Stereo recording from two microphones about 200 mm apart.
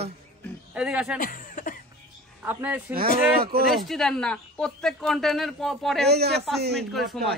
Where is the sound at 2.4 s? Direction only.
10° right (ahead or behind).